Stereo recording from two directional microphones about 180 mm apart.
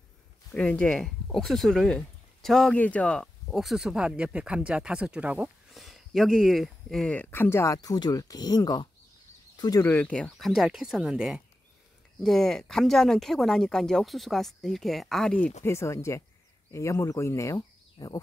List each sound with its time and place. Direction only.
0.5 s speech: 5° left (ahead or behind)
9.9 s speech: 5° left (ahead or behind)
15.6 s speech: 15° left (ahead or behind)